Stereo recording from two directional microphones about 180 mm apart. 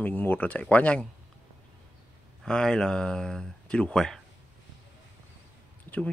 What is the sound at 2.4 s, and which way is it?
Speech, 5° left (ahead or behind).